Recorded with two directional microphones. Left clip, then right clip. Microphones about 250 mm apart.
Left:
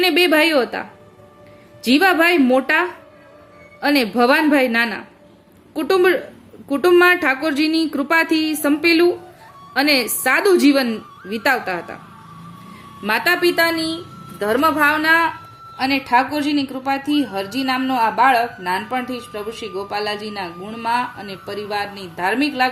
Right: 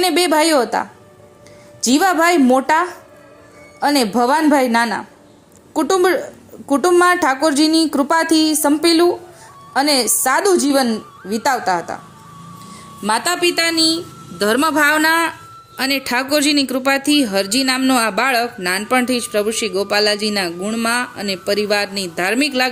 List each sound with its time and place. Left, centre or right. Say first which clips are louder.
0.0 s speech: even; centre
1.8 s speech: even; centre
8.1 s speech: right 1 dB; centre
8.9 s speech: right 1 dB; centre
10.9 s speech: right 4 dB; centre
11.6 s speech: right 6 dB; centre
13.0 s speech: even; right